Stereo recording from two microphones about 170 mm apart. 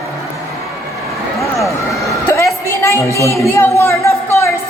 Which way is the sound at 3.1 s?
15° left (ahead or behind).